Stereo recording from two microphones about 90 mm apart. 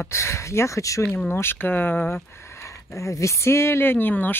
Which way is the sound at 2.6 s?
35° left (ahead or behind).